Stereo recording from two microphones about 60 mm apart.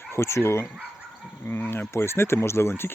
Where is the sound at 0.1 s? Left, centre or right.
Left.